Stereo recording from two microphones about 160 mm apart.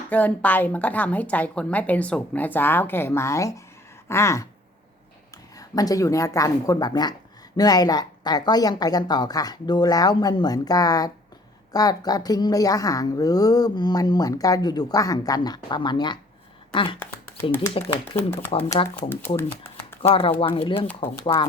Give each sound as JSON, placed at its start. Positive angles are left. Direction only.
{"t": 0.1, "sound": "a woman's voice", "side_deg": 10}
{"t": 5.5, "sound": "speech", "side_deg": 20}
{"t": 19.0, "sound": "a woman's voice", "side_deg": 15}
{"t": 19.4, "sound": "shuffling cards", "side_deg": 15}
{"t": 20.0, "sound": "speech", "side_deg": 35}
{"t": 20.8, "sound": "a woman's voice", "side_deg": 10}